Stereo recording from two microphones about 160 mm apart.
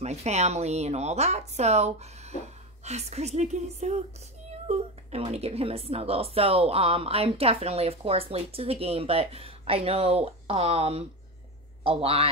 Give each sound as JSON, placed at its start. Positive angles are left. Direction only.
{"t": 0.0, "sound": "a woman's voice", "side_deg": -45}